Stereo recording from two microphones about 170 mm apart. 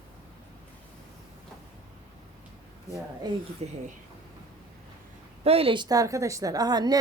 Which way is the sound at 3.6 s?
40° right (ahead or behind).